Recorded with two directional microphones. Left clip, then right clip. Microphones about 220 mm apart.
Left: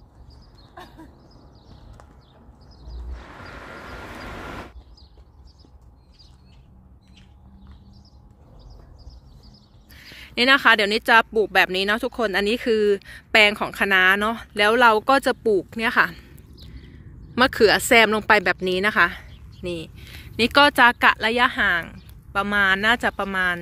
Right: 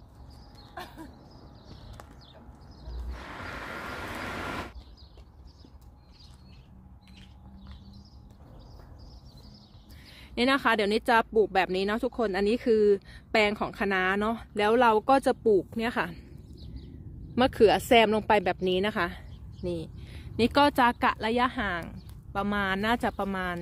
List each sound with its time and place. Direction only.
3.1 s vehicle: 35° right (ahead or behind)
9.9 s speech: centre (ahead or behind)
17.4 s speech: centre (ahead or behind)